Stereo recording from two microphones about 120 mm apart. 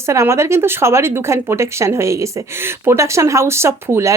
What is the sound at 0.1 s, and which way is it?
Speech, 25° right (ahead or behind).